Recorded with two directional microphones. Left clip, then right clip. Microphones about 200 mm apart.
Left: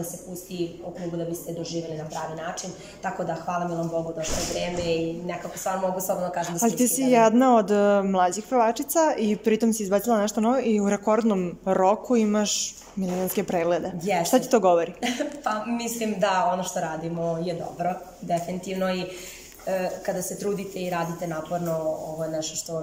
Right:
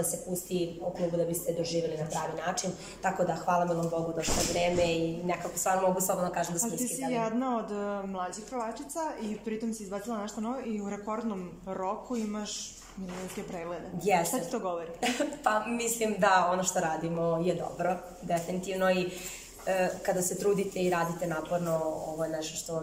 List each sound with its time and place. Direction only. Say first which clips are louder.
3.0 s speech: left 1 dB; 5° right (ahead or behind)
6.6 s speech: left 10 dB; 50° left (ahead or behind)
15.0 s speech: left 2 dB; centre (ahead or behind)